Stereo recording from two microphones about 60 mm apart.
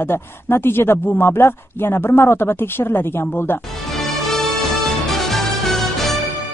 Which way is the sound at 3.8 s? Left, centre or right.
Centre.